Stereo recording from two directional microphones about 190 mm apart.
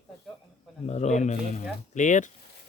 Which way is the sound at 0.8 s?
35° left (ahead or behind).